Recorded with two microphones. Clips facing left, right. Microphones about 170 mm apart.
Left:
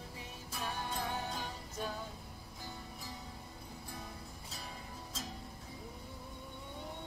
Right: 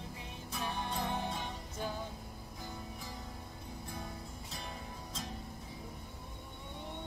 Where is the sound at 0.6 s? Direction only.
5° left (ahead or behind).